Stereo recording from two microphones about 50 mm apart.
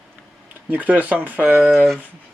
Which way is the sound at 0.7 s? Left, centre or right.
Right.